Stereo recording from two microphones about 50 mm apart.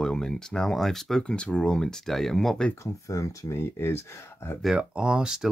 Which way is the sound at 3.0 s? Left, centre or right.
Left.